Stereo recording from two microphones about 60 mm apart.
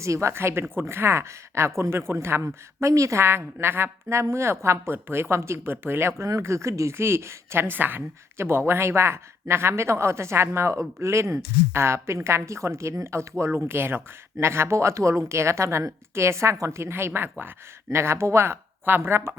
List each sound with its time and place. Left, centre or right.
0.0 s speech: right
4.1 s speech: right
5.7 s speech: right
17.1 s speech: right
17.8 s speech: right